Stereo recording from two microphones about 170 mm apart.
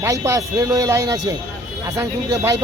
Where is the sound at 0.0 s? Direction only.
20° right (ahead or behind).